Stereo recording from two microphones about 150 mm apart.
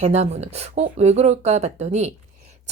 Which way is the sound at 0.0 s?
45° right (ahead or behind).